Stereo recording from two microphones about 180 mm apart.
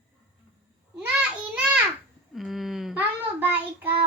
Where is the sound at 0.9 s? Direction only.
5° right (ahead or behind).